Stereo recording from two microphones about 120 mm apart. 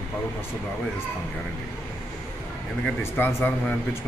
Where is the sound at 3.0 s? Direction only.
15° left (ahead or behind).